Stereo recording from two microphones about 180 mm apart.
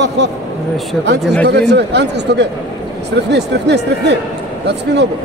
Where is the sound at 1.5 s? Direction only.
70° right (ahead or behind).